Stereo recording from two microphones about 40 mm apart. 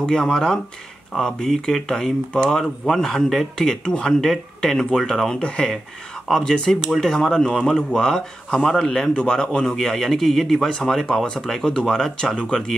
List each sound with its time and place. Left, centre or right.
0.0 s speech: centre
2.3 s speech: left
2.8 s a man's voice: centre
3.5 s speech: centre
9.1 s speech: left
9.6 s speech: centre